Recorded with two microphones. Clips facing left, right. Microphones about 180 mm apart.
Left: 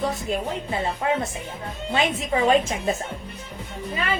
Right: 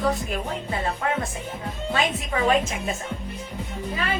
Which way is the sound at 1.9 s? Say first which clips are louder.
Left 3 dB; 25° left (ahead or behind).